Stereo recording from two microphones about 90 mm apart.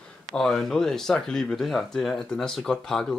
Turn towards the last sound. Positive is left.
turn(degrees=5)  # may be behind; listen again after turning